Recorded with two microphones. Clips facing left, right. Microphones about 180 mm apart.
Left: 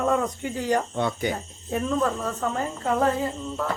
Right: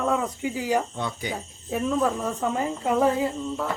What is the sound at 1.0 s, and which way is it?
Speech, 60° left (ahead or behind).